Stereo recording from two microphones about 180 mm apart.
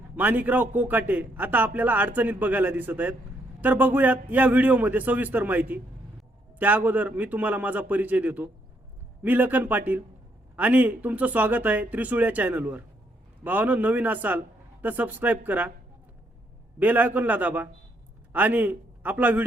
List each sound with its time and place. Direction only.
0.2 s speech: 10° right (ahead or behind)
16.8 s a man's voice: 10° right (ahead or behind)